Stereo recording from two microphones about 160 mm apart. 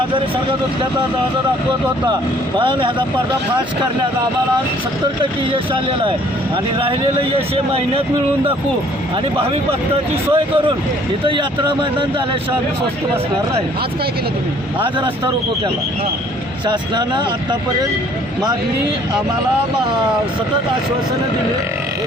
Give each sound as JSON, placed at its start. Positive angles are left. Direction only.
{"t": 2.6, "sound": "speech", "side_deg": -30}
{"t": 5.5, "sound": "speech", "side_deg": -30}
{"t": 10.3, "sound": "speech", "side_deg": -35}
{"t": 16.6, "sound": "speech", "side_deg": -30}